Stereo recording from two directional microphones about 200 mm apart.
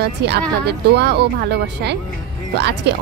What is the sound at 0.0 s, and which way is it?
Speech, 55° right (ahead or behind).